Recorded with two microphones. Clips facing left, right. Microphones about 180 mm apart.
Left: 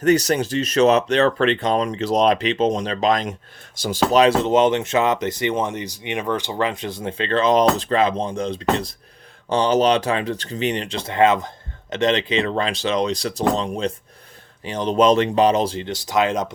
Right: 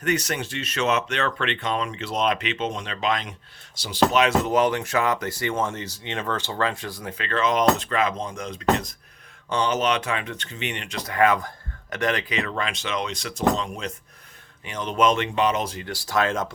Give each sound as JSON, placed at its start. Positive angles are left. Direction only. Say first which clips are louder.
{"t": 0.0, "sound": "speech", "louder": "left 8 dB", "side_deg": 35}
{"t": 4.1, "sound": "speech", "louder": "left 8 dB", "side_deg": 30}